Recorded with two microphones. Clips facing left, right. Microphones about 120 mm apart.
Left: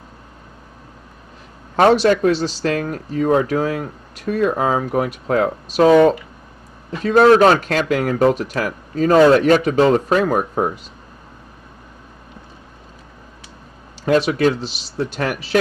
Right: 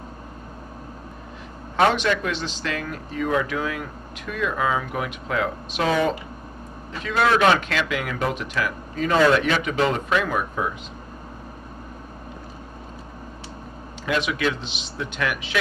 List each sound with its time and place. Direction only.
1.8 s speech: 40° left (ahead or behind)
14.0 s speech: 40° left (ahead or behind)